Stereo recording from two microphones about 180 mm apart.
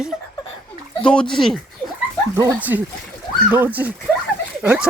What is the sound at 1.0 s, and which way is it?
Speech, 5° left (ahead or behind).